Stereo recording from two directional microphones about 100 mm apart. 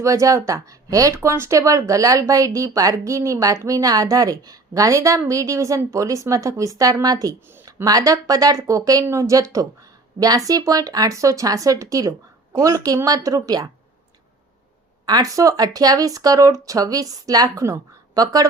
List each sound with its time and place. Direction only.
0.0 s speech: 35° right (ahead or behind)
15.0 s speech: 40° right (ahead or behind)